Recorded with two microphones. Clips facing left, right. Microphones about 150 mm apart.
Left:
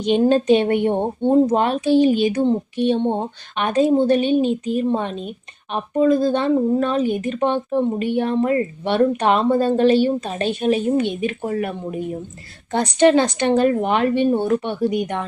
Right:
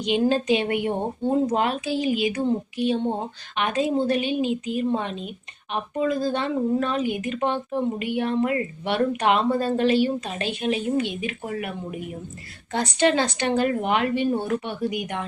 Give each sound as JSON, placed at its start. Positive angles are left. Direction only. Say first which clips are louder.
{"t": 0.2, "sound": "speech", "louder": "left 6 dB", "side_deg": 35}
{"t": 3.6, "sound": "speech", "louder": "left 6 dB", "side_deg": 40}
{"t": 5.7, "sound": "speech", "louder": "left 7 dB", "side_deg": 30}
{"t": 7.4, "sound": "speech", "louder": "left 6 dB", "side_deg": 20}
{"t": 7.9, "sound": "speech", "louder": "left 4 dB", "side_deg": 35}